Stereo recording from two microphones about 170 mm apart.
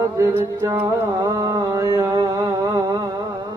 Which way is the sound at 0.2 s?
15° right (ahead or behind).